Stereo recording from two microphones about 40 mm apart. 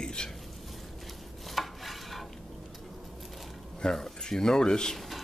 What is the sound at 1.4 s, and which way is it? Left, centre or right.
Dishes, centre.